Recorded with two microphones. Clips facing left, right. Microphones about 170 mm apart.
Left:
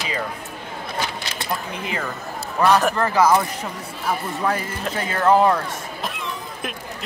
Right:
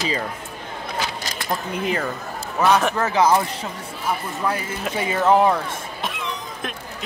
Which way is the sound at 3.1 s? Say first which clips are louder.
Even; 25° right (ahead or behind).